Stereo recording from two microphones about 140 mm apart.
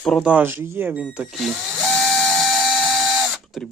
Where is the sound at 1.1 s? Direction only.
Centre (ahead or behind).